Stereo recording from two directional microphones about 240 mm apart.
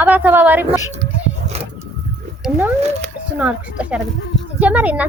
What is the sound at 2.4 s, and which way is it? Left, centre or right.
Speech, centre.